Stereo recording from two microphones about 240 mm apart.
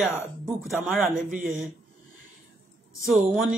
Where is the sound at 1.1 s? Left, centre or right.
Right.